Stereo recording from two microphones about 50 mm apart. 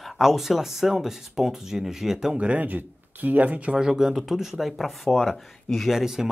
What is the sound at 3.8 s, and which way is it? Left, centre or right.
Speech, centre.